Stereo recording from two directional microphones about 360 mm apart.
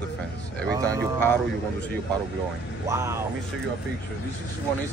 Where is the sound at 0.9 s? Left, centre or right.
Centre.